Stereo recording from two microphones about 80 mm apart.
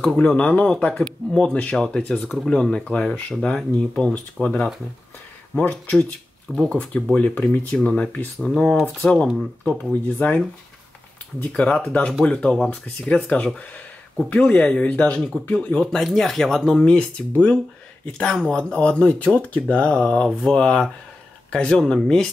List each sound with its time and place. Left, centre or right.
0.0 s speech: centre
8.5 s speech: centre
10.1 s speech: centre